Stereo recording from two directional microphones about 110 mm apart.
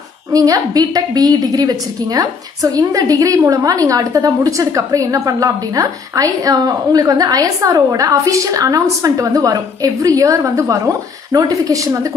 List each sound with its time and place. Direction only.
0.3 s a woman's voice: 35° right (ahead or behind)